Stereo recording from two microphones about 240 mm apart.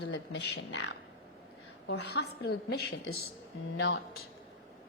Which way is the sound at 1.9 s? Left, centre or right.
Left.